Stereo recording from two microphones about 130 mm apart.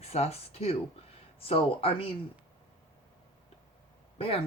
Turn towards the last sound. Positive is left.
turn(degrees=45)  # may be behind; listen again after turning